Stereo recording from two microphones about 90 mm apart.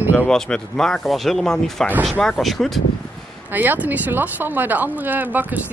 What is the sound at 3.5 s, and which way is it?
Speech, 20° right (ahead or behind).